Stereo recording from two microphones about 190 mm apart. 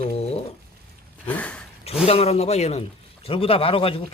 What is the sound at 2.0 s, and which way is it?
A man's voice, 35° left (ahead or behind).